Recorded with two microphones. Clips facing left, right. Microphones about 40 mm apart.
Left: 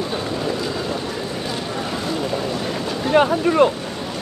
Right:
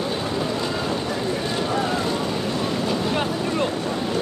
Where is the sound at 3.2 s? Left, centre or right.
Left.